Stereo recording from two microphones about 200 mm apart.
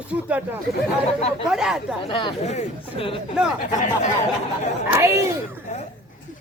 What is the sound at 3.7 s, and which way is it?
Speech, 35° left (ahead or behind).